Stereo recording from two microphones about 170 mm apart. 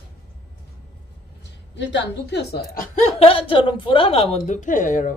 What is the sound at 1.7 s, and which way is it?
A woman's voice, 90° left.